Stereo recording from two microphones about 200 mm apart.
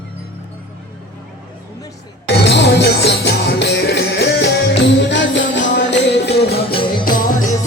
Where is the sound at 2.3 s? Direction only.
55° left (ahead or behind).